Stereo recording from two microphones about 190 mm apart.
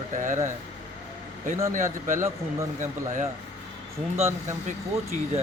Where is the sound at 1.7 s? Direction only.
40° right (ahead or behind).